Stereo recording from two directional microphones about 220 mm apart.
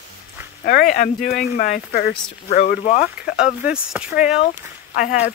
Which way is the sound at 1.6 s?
40° left (ahead or behind).